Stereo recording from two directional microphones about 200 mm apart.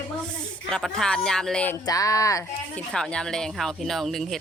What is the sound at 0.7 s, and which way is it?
A woman's voice, centre (ahead or behind).